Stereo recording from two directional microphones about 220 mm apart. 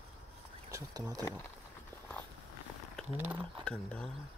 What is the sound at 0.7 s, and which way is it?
Speech, 15° right (ahead or behind).